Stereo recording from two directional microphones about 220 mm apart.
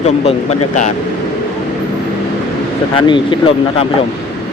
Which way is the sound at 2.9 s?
20° left (ahead or behind).